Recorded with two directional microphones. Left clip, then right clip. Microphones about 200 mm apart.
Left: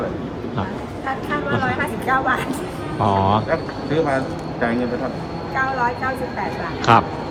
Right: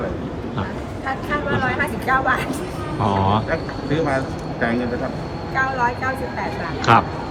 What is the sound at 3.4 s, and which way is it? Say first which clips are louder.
Speech: left 1 dB; 30° left (ahead or behind).